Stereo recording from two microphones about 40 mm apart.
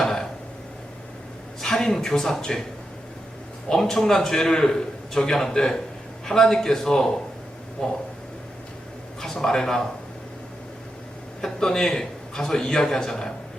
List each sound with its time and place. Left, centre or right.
0.0 s a sound: centre
1.6 s a man's voice: centre
3.7 s a man's voice: centre
9.2 s a man's voice: centre
11.3 s a man's voice: centre